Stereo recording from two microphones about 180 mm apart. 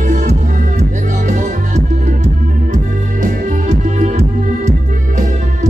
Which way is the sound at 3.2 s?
40° right (ahead or behind).